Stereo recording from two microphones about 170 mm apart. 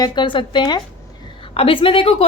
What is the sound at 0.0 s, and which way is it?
A woman's voice, 30° left (ahead or behind).